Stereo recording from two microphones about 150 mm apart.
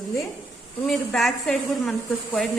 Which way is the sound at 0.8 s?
Centre (ahead or behind).